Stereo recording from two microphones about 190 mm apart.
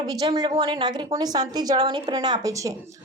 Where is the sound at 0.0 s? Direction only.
20° right (ahead or behind).